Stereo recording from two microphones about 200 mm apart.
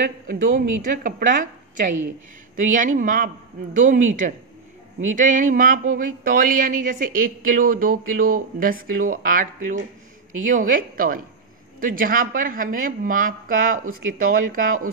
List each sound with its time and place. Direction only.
0.0 s speech: 45° right (ahead or behind)